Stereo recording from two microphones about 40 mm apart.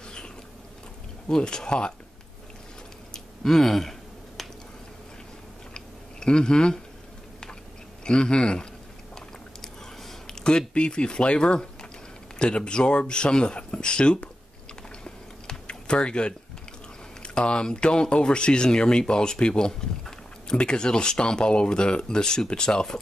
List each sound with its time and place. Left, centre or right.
1.3 s speech: centre
3.1 s a sound: centre
4.4 s squish: centre
6.1 s speech: centre
8.0 s speech: left
10.2 s speech: centre
15.0 s typing: left
17.2 s speech: left